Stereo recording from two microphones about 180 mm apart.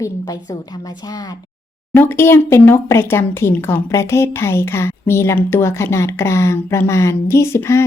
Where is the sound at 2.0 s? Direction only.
10° left (ahead or behind).